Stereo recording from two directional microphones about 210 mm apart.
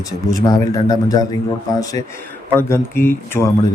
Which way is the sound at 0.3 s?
15° left (ahead or behind).